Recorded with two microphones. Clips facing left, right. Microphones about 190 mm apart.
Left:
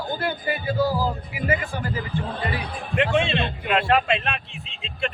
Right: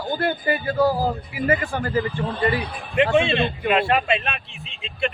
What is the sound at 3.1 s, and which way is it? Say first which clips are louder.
Speech: right 3 dB; 5° right (ahead or behind).